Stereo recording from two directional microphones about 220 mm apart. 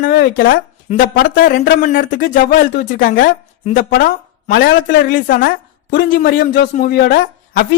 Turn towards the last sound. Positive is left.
turn(degrees=40)  # may be behind; listen again after turning